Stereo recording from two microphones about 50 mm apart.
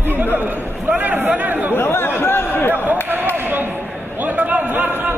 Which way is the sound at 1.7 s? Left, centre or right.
Left.